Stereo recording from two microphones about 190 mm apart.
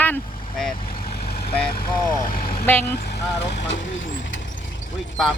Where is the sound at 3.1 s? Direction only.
65° left (ahead or behind).